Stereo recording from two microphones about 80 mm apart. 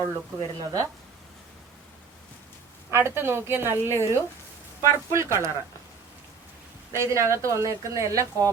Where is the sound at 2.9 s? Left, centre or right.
Right.